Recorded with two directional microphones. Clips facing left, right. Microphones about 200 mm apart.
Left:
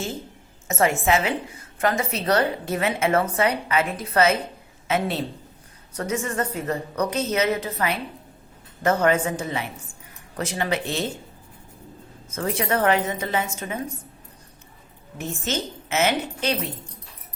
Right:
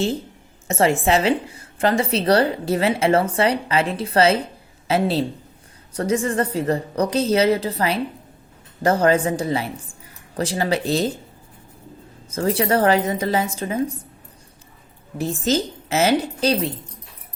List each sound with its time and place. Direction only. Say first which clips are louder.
0.7 s a woman's voice: right 3 dB; 30° right (ahead or behind)
12.3 s a woman's voice: right 5 dB; 35° right (ahead or behind)
15.2 s a woman's voice: right 7 dB; 35° right (ahead or behind)